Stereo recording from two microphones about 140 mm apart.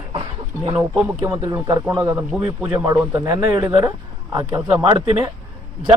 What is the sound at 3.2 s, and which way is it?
A man's voice, 25° right (ahead or behind).